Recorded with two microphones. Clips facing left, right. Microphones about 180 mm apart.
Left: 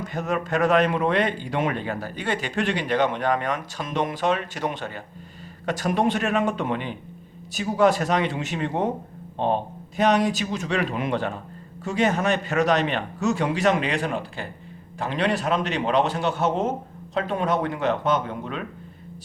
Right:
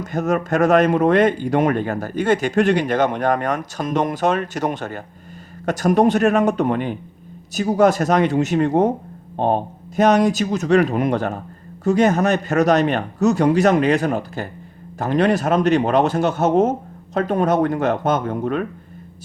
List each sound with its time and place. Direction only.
0.0 s a man's voice: 45° right (ahead or behind)